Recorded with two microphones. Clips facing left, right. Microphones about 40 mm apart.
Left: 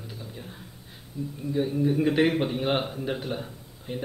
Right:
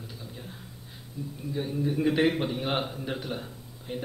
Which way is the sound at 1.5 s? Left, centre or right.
Centre.